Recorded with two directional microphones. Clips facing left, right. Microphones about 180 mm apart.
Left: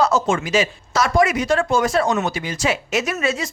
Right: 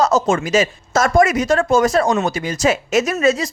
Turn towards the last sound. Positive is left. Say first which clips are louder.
# right 6 dB
turn(degrees=-35)  # may be behind; listen again after turning